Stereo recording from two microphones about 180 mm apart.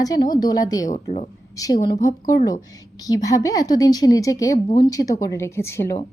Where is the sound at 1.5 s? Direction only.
20° left (ahead or behind).